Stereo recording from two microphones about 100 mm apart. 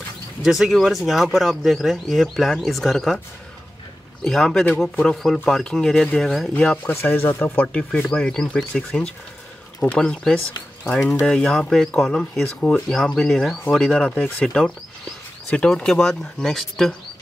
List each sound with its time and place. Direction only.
0.4 s speech: centre (ahead or behind)
4.2 s speech: 5° left (ahead or behind)
6.5 s speech: 15° left (ahead or behind)